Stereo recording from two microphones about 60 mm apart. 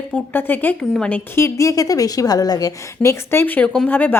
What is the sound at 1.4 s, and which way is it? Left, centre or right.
A woman's voice, left.